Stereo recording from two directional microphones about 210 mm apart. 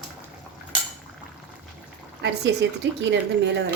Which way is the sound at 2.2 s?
55° right (ahead or behind).